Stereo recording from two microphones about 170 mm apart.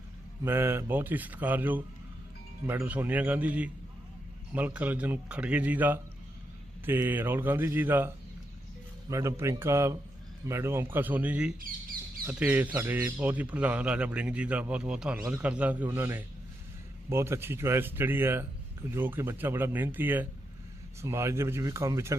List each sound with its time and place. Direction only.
0.4 s a man's voice: 15° right (ahead or behind)